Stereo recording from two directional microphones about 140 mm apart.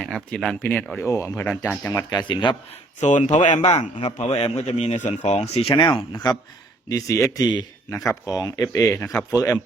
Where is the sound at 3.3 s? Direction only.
60° left (ahead or behind).